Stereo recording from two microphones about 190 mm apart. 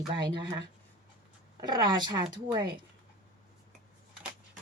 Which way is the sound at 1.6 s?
20° right (ahead or behind).